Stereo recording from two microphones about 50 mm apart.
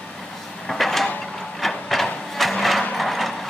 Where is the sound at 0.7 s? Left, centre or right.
Centre.